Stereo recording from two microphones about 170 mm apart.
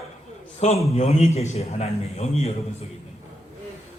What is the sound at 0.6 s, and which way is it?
A man's voice, 40° left (ahead or behind).